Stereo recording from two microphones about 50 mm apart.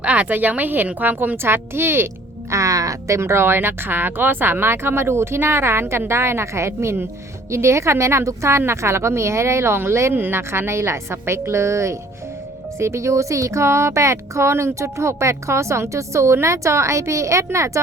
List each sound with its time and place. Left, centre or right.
0.0 s speech: right
2.5 s a woman's voice: right
10.2 s a woman's voice: right